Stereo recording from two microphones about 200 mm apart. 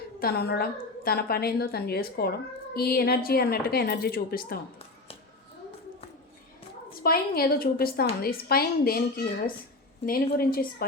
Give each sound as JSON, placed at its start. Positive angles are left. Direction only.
{"t": 0.2, "sound": "a woman's voice", "side_deg": 50}
{"t": 7.0, "sound": "a woman's voice", "side_deg": 50}